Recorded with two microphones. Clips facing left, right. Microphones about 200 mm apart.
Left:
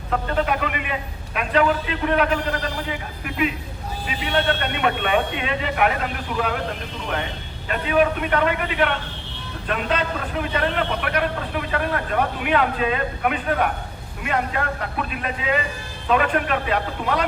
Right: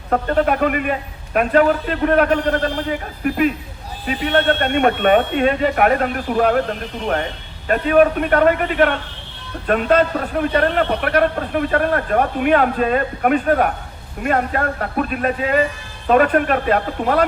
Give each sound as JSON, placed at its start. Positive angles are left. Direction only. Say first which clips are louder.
{"t": 0.1, "sound": "a man's voice", "louder": "right 5 dB", "side_deg": -45}
{"t": 7.7, "sound": "a man's voice", "louder": "right 6 dB", "side_deg": -45}